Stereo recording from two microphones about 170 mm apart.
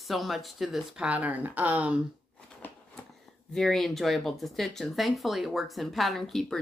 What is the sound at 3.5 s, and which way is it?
Speech, centre (ahead or behind).